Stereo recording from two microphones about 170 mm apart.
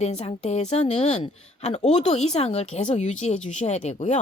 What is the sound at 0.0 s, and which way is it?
A woman's voice, 40° left (ahead or behind).